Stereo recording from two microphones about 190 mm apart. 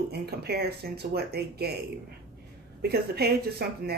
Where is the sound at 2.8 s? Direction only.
55° right (ahead or behind).